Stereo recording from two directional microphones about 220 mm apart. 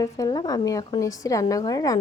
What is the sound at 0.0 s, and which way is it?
Speech, 15° left (ahead or behind).